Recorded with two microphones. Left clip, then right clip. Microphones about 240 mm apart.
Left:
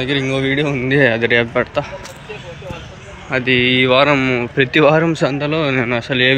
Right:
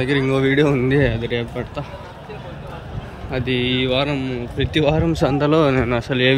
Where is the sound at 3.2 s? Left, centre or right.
Centre.